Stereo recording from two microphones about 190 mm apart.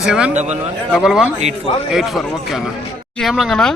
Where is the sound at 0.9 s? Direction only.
Centre (ahead or behind).